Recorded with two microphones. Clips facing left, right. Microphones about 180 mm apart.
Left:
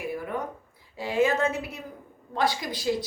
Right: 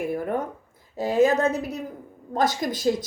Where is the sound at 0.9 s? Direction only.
40° right (ahead or behind).